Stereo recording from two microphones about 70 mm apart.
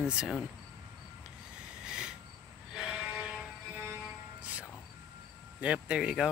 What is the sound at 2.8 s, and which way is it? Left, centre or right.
Music, centre.